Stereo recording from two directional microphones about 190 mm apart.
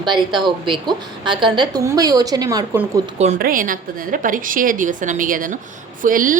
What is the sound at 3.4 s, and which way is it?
Speech, 45° right (ahead or behind).